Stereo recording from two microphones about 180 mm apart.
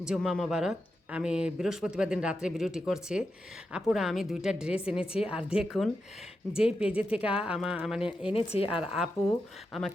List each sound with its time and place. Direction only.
0.0 s speech: 5° right (ahead or behind)
8.3 s speech: 30° left (ahead or behind)
8.8 s speech: 5° right (ahead or behind)